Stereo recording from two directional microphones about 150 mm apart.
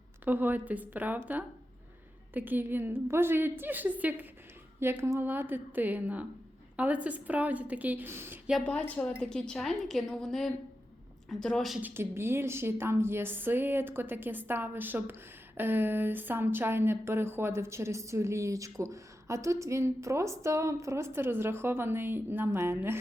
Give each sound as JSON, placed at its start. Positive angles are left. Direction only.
{"t": 0.3, "sound": "speech", "side_deg": -10}
{"t": 8.6, "sound": "a woman's voice", "side_deg": 10}
{"t": 11.8, "sound": "speech", "side_deg": -15}